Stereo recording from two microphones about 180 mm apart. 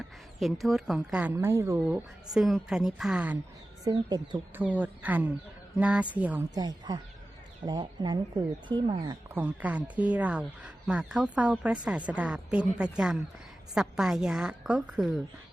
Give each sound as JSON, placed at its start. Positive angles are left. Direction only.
{"t": 0.3, "sound": "a woman's voice", "side_deg": 0}
{"t": 3.8, "sound": "speech", "side_deg": -25}
{"t": 4.5, "sound": "speech", "side_deg": -10}
{"t": 6.5, "sound": "speech", "side_deg": -20}
{"t": 9.3, "sound": "a woman's voice", "side_deg": -10}